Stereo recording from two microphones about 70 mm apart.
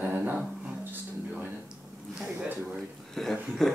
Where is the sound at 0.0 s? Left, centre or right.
Centre.